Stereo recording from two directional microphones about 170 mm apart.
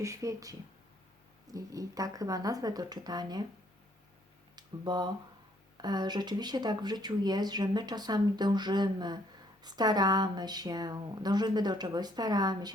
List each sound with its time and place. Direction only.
0.0 s speech: 20° right (ahead or behind)
4.5 s speech: 25° right (ahead or behind)